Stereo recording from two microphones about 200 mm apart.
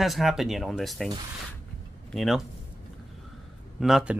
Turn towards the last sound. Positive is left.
turn(degrees=0)  # may be behind; listen again after turning